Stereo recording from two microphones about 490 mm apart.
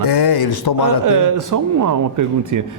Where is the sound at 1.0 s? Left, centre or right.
Right.